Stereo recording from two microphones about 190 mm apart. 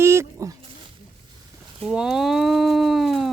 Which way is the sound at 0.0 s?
15° right (ahead or behind).